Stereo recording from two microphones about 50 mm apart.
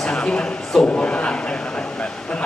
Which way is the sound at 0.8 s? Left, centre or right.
Left.